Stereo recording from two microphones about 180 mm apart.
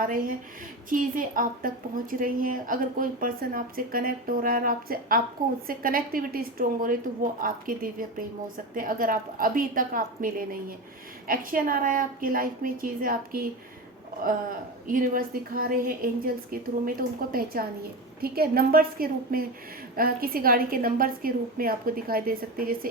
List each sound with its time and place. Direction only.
0.0 s a woman's voice: 50° right (ahead or behind)
14.8 s a woman's voice: 50° right (ahead or behind)